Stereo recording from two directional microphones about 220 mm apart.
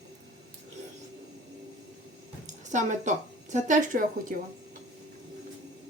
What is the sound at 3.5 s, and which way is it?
Speech, 35° right (ahead or behind).